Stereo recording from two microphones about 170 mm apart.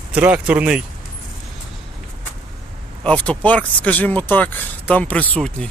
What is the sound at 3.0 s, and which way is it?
Speech, 5° left (ahead or behind).